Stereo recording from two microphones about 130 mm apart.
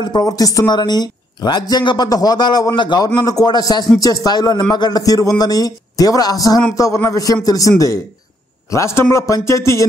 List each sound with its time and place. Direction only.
0.0 s a man's voice: 30° left (ahead or behind)